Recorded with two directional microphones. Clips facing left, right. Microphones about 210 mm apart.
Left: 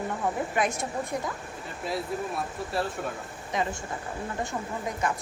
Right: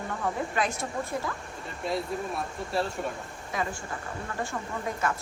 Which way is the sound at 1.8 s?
Centre (ahead or behind).